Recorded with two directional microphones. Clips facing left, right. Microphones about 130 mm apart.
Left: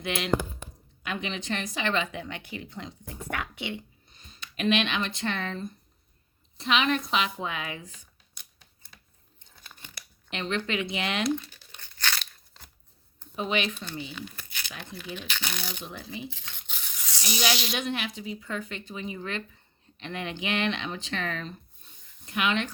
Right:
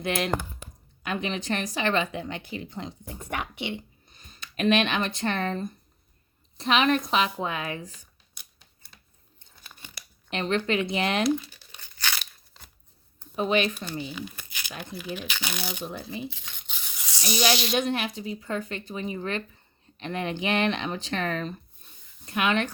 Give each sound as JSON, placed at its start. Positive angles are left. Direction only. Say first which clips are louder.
{"t": 0.0, "sound": "speech", "louder": "right 1 dB", "side_deg": -45}
{"t": 4.1, "sound": "speech", "louder": "right 1 dB", "side_deg": -45}
{"t": 9.6, "sound": "crunch", "louder": "right 1 dB", "side_deg": -10}
{"t": 10.2, "sound": "speech", "louder": "right 4 dB", "side_deg": -40}
{"t": 11.3, "sound": "tearing", "louder": "right 2 dB", "side_deg": -5}
{"t": 13.3, "sound": "speech", "louder": "right 5 dB", "side_deg": -45}
{"t": 14.1, "sound": "tearing", "louder": "right 3 dB", "side_deg": -10}
{"t": 14.8, "sound": "speech", "louder": "right 5 dB", "side_deg": -10}
{"t": 15.9, "sound": "speech", "louder": "right 4 dB", "side_deg": -40}
{"t": 16.3, "sound": "tearing", "louder": "even", "side_deg": -10}
{"t": 17.7, "sound": "speech", "louder": "right 5 dB", "side_deg": -40}